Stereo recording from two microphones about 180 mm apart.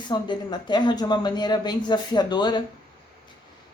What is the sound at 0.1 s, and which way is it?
Speech, 25° left (ahead or behind).